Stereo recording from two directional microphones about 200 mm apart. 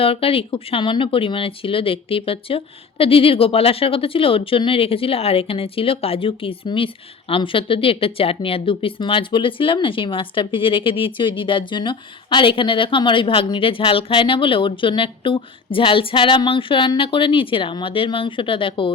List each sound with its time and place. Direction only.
0.0 s speech: 30° left (ahead or behind)